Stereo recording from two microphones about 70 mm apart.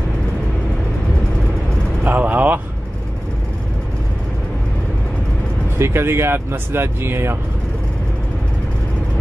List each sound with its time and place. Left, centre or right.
2.0 s vehicle: right
5.8 s speech: right